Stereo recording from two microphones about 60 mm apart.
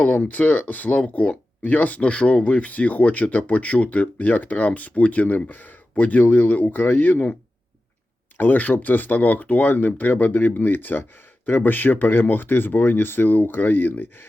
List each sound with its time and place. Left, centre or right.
0.0 s speech: left
8.4 s speech: left